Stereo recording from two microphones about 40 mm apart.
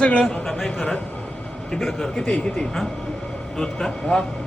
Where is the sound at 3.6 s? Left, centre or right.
Centre.